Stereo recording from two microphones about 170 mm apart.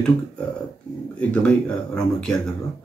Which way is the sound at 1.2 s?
5° left (ahead or behind).